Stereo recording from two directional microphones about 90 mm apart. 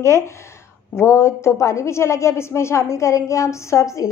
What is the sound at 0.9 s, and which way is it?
A woman's voice, 30° left (ahead or behind).